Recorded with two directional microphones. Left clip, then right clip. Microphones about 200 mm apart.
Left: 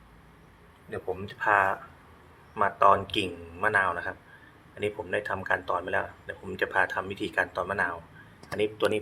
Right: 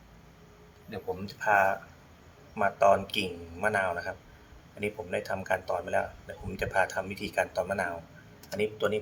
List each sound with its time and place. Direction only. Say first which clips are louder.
1.4 s speech: left 1 dB; 15° left (ahead or behind)